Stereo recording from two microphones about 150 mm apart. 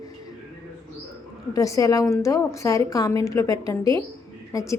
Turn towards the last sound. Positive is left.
turn(degrees=20)  # may be behind; listen again after turning